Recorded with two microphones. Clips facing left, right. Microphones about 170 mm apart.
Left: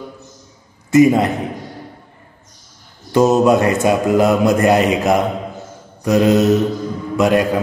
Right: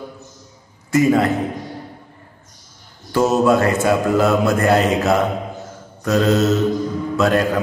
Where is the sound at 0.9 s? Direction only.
20° left (ahead or behind).